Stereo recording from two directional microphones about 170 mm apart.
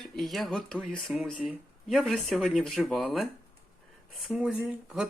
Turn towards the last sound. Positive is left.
turn(degrees=-5)  # may be behind; listen again after turning